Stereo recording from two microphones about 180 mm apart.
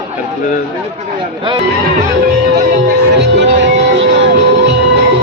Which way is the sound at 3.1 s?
80° right.